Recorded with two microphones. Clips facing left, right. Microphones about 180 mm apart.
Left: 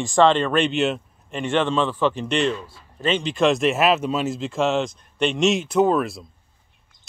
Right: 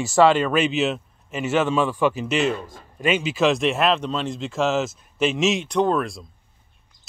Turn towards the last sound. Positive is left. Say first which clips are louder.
# left 2 dB
turn(degrees=5)  # may be behind; listen again after turning